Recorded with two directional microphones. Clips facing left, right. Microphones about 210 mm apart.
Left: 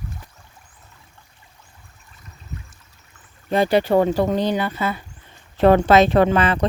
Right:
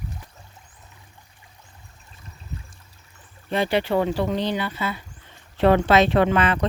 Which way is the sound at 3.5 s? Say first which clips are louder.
Left 5 dB; 40° left (ahead or behind).